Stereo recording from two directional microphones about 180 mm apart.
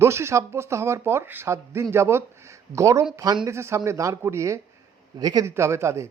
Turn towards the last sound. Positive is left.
turn(degrees=-15)  # may be behind; listen again after turning